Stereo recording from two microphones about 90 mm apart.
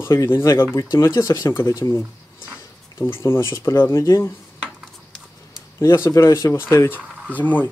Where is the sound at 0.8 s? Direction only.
35° left (ahead or behind).